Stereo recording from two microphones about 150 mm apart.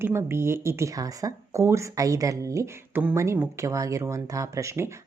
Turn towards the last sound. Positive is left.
turn(degrees=-20)  # may be behind; listen again after turning